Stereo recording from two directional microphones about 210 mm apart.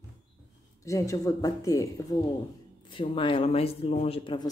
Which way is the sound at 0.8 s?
15° left (ahead or behind).